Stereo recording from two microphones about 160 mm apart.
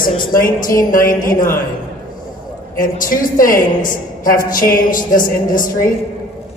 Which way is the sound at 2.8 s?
60° left (ahead or behind).